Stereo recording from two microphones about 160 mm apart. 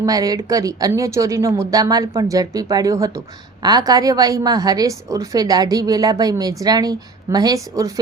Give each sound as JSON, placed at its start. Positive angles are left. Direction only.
{"t": 0.0, "sound": "a woman's voice", "side_deg": -20}